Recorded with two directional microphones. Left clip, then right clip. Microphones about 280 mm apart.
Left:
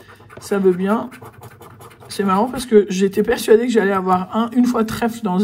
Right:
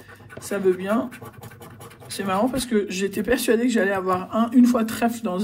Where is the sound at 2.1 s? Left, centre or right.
Left.